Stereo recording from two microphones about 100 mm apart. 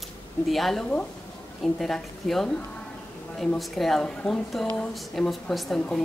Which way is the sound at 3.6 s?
Centre (ahead or behind).